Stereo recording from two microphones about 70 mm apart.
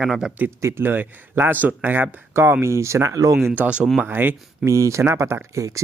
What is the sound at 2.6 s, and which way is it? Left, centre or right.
Speech, right.